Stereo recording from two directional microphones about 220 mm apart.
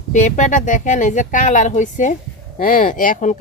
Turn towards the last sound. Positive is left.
turn(degrees=35)  # may be behind; listen again after turning